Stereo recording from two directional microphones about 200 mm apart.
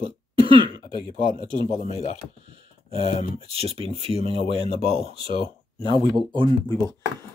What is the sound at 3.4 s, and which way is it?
Speech, 30° right (ahead or behind).